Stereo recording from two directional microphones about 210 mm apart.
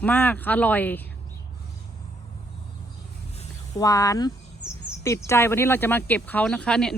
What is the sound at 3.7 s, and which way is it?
Speech, 15° left (ahead or behind).